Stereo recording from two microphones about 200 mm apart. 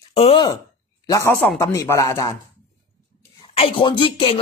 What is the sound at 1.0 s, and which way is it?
Speech, 15° left (ahead or behind).